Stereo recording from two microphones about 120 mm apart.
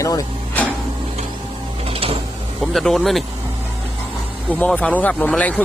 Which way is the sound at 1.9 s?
55° right (ahead or behind).